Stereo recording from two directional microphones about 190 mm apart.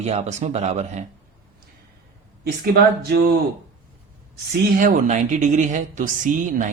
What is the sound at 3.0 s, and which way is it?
Speech, 55° right (ahead or behind).